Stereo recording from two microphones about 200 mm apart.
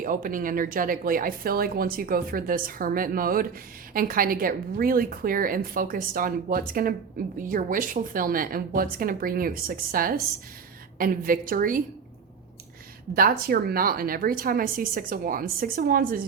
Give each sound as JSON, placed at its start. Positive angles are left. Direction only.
{"t": 0.0, "sound": "speech", "side_deg": -45}
{"t": 13.1, "sound": "speech", "side_deg": -45}